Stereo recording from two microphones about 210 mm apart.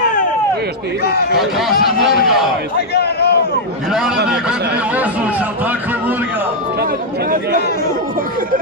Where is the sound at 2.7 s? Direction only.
50° left (ahead or behind).